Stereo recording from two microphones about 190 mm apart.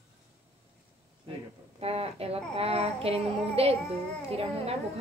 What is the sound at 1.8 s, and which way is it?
A child's voice, 30° right (ahead or behind).